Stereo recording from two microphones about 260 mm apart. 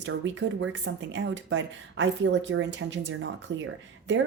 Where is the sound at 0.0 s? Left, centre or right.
Right.